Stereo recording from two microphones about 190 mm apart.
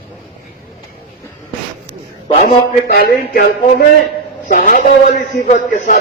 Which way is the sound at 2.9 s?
50° left (ahead or behind).